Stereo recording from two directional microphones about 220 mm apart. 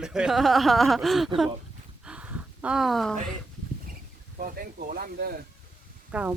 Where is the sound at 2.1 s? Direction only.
5° right (ahead or behind).